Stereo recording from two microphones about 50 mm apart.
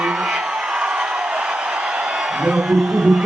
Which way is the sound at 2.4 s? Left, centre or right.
Centre.